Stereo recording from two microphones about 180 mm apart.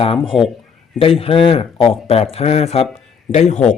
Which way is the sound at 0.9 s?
30° left (ahead or behind).